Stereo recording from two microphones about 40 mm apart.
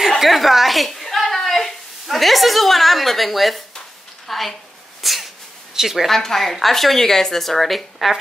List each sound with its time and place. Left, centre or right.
0.1 s a sound: centre
4.3 s a woman's voice: centre
5.0 s sneeze: centre
5.8 s a woman's voice: centre
6.0 s a woman's voice: centre